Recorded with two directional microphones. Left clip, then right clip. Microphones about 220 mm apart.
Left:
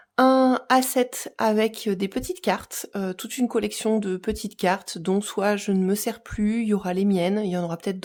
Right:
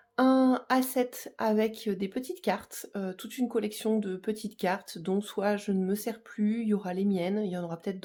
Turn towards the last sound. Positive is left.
turn(degrees=30)  # may be behind; listen again after turning